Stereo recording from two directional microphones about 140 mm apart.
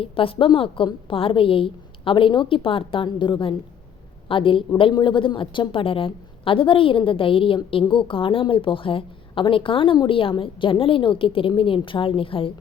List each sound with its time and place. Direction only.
0.0 s a woman's voice: 40° left (ahead or behind)